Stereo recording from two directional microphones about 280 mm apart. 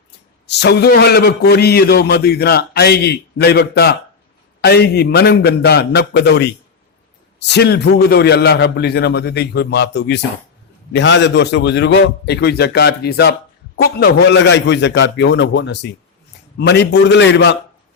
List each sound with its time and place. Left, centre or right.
0.4 s a man's voice: left